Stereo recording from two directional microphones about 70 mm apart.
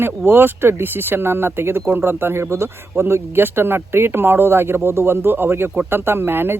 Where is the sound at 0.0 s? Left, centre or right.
Right.